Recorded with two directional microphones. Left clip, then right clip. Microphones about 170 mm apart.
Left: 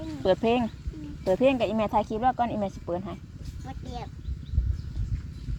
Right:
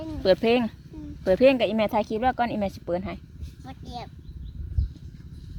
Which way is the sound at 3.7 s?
55° right (ahead or behind).